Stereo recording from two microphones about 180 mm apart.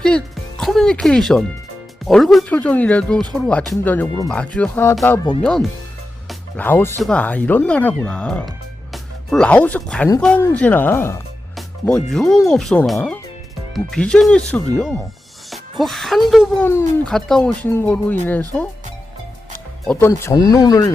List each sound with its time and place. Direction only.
0.0 s speech: 5° left (ahead or behind)
6.2 s music: 10° left (ahead or behind)
7.0 s speech: 5° left (ahead or behind)
11.5 s speech: 5° left (ahead or behind)
16.6 s speech: 15° left (ahead or behind)
17.1 s speech: centre (ahead or behind)
19.9 s speech: 15° left (ahead or behind)